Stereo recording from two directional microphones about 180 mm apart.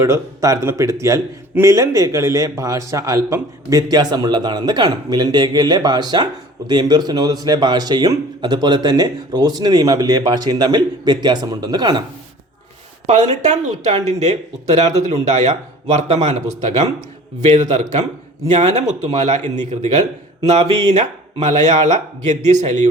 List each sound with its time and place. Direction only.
0.0 s a man's voice: 15° right (ahead or behind)
13.1 s speech: 40° right (ahead or behind)
18.5 s speech: 40° right (ahead or behind)